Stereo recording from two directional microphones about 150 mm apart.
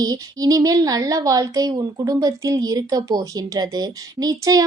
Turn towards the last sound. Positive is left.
turn(degrees=-25)  # may be behind; listen again after turning